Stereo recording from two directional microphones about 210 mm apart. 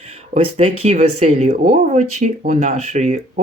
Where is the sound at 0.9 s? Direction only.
30° right (ahead or behind).